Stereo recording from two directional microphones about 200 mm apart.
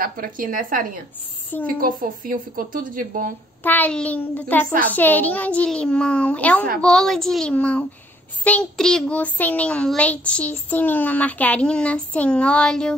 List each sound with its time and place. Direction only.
0.0 s speech: 45° right (ahead or behind)
3.6 s a child's voice: 10° left (ahead or behind)